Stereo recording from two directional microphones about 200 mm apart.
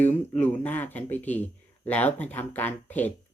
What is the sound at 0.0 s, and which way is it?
Speech, 10° left (ahead or behind).